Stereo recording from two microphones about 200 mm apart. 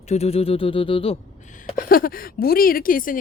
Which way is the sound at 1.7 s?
45° left (ahead or behind).